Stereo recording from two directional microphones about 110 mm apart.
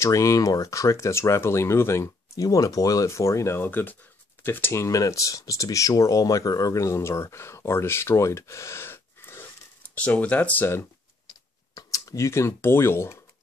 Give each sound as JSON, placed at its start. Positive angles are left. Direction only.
{"t": 0.0, "sound": "speech", "side_deg": 30}
{"t": 11.7, "sound": "speech", "side_deg": 30}